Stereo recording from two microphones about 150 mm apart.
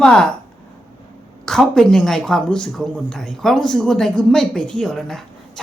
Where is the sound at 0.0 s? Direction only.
5° left (ahead or behind).